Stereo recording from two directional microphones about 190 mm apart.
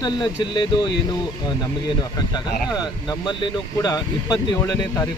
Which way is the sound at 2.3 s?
20° left (ahead or behind).